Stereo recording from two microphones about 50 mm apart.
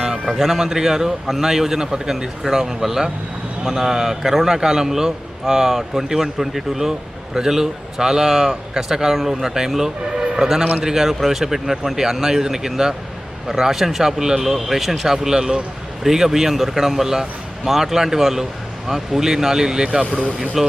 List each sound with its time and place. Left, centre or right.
0.3 s a man's voice: centre
20.1 s speech: left
20.6 s speech: centre